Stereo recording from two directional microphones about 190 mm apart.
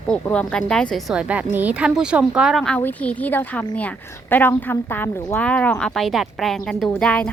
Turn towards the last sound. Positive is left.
turn(degrees=5)  # may be behind; listen again after turning